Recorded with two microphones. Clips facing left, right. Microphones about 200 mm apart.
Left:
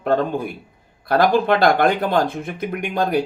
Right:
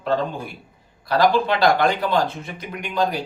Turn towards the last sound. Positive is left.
turn(degrees=55)  # may be behind; listen again after turning